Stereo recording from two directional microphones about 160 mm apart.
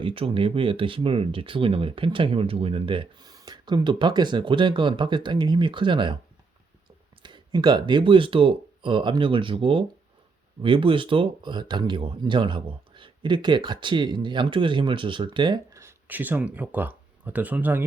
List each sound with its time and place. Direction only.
0.0 s speech: 35° right (ahead or behind)
7.2 s speech: 30° right (ahead or behind); by 17.8 s 10° right (ahead or behind)